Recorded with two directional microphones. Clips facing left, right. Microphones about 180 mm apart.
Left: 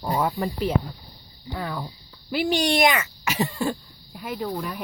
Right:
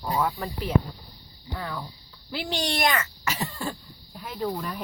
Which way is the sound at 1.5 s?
10° left (ahead or behind).